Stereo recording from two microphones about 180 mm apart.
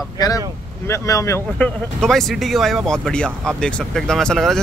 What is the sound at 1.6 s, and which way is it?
Speech, centre (ahead or behind).